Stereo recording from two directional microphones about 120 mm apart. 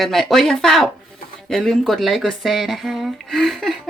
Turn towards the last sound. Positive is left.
turn(degrees=0)  # may be behind; listen again after turning